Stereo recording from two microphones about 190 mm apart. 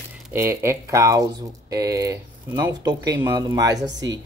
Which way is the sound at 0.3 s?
15° right (ahead or behind).